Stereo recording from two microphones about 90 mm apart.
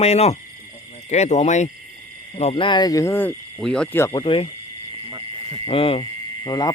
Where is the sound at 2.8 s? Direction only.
40° left (ahead or behind).